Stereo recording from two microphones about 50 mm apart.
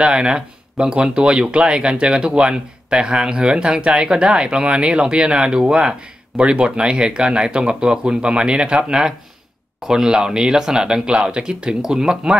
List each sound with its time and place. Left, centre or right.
0.0 s speech: centre